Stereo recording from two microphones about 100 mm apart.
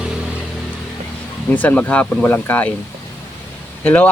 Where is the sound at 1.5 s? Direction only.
15° left (ahead or behind).